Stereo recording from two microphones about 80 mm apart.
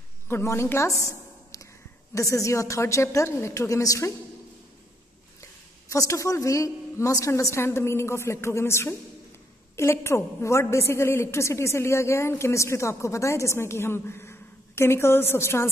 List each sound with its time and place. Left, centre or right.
0.3 s a woman's voice: left
1.5 s a sound: left
2.1 s a woman's voice: left
5.4 s a woman's voice: left